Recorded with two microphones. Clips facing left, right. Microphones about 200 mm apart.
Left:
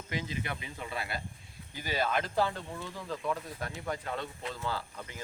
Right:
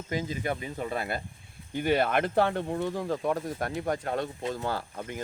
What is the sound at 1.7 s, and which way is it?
Speech, 60° right (ahead or behind).